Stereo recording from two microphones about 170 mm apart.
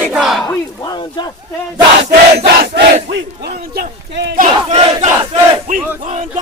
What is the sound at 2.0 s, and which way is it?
Battle cry, 80° right.